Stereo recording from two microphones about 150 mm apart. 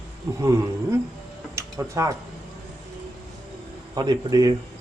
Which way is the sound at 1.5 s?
20° right (ahead or behind).